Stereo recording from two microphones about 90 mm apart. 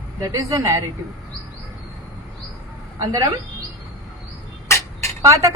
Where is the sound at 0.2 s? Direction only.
40° right (ahead or behind).